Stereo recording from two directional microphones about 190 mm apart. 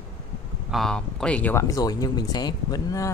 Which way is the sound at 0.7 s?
5° left (ahead or behind).